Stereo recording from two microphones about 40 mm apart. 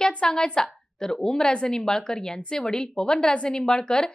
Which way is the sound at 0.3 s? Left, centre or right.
Centre.